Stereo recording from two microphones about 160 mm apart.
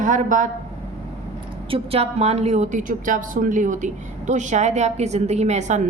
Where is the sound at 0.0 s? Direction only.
55° right (ahead or behind).